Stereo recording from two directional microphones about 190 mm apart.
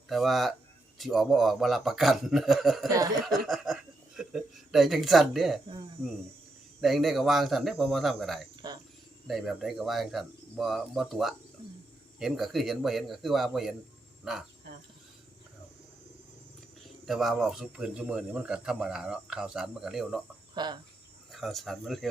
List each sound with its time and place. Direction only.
0.1 s speech: centre (ahead or behind)
6.8 s speech: centre (ahead or behind)
16.8 s speech: centre (ahead or behind)
20.6 s cricket: 25° right (ahead or behind)
21.3 s speech: centre (ahead or behind)